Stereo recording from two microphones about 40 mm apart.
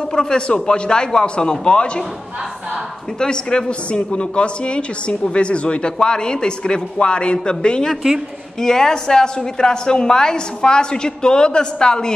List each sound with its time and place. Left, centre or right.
0.1 s a man's voice: centre
3.2 s a man's voice: left